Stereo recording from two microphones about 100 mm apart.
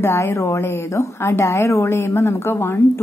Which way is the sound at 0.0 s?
25° left (ahead or behind).